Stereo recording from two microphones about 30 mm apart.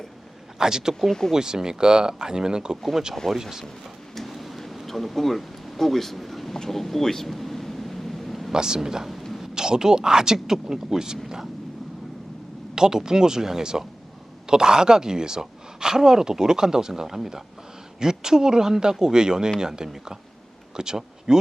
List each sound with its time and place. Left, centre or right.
0.6 s speech: right
3.2 s speech: centre
4.1 s a sound: centre
6.5 s speech: centre
7.0 s a sound: centre
8.5 s speech: right
12.7 s speech: right